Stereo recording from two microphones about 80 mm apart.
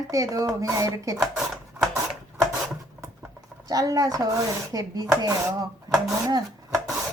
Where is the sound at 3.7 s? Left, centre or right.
Right.